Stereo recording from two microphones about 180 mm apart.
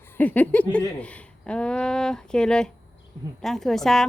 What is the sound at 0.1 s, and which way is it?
Speech, 10° left (ahead or behind).